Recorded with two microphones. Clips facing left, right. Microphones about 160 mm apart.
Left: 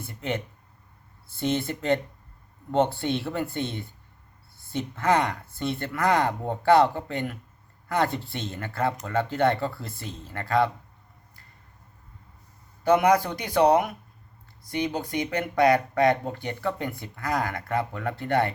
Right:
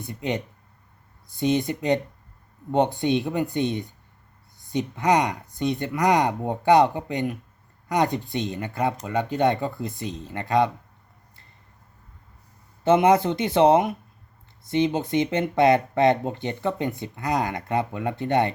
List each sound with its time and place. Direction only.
0.0 s speech: 15° right (ahead or behind)
12.8 s speech: 25° right (ahead or behind)